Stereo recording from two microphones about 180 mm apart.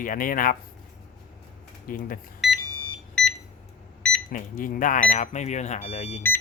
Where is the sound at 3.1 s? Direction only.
5° left (ahead or behind).